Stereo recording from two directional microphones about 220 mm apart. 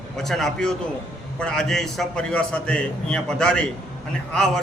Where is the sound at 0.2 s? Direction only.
Centre (ahead or behind).